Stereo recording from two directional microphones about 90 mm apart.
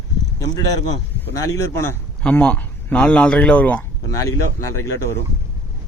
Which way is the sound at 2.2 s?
10° left (ahead or behind).